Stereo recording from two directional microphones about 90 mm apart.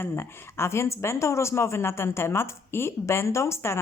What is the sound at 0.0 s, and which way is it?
Speech, 25° left (ahead or behind).